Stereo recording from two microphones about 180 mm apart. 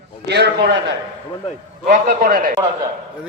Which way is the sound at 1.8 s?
50° right (ahead or behind).